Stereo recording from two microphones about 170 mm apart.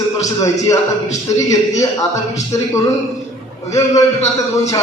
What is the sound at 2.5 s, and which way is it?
Speech, 20° left (ahead or behind).